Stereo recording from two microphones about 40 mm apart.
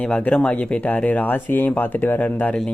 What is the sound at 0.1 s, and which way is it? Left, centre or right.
Speech, left.